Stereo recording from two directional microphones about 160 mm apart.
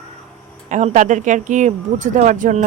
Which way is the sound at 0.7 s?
50° right (ahead or behind).